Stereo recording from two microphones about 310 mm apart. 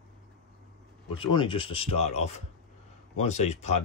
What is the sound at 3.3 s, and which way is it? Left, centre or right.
Speech, left.